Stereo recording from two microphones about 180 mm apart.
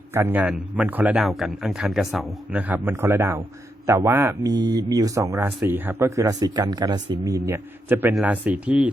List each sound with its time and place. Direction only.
0.1 s a man's voice: 15° right (ahead or behind)